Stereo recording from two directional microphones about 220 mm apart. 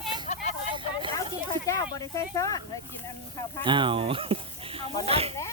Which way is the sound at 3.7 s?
20° right (ahead or behind).